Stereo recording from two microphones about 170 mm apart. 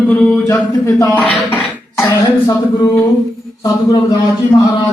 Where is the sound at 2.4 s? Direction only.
20° left (ahead or behind).